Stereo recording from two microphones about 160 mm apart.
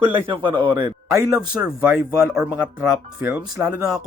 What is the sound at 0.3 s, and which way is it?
Speech, 30° right (ahead or behind).